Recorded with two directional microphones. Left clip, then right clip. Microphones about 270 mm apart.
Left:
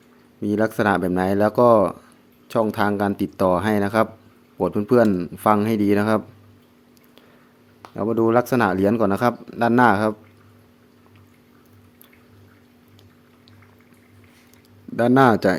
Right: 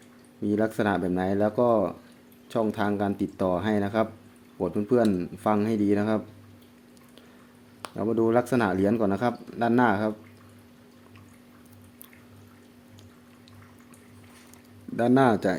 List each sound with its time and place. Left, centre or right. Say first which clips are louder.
0.4 s speech: left 6 dB; centre
7.9 s speech: left 5 dB; centre
14.9 s speech: left 6 dB; centre